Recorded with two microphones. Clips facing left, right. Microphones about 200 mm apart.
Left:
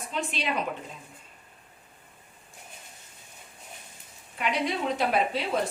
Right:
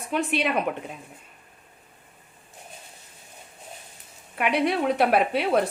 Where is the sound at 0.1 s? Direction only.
60° right (ahead or behind).